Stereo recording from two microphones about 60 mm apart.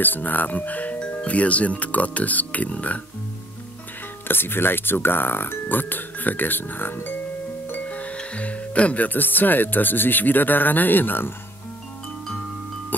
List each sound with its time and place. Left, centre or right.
0.0 s speech: left
4.3 s speech: left
7.7 s speech: left